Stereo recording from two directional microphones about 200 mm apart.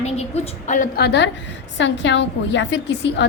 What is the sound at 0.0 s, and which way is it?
A woman's voice, 30° left (ahead or behind).